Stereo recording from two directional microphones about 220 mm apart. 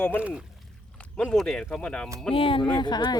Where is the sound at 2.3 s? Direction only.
25° left (ahead or behind).